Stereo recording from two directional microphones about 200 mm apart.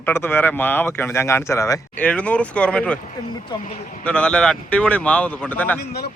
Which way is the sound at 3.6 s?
40° left (ahead or behind).